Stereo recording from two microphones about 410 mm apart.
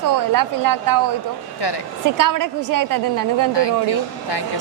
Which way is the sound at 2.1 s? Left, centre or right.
Right.